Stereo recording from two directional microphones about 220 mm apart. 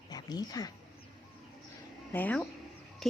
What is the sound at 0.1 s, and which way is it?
Speech, 20° left (ahead or behind).